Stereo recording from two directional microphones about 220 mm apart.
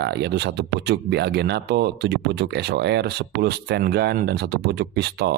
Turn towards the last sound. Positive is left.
turn(degrees=-50)  # may be behind; listen again after turning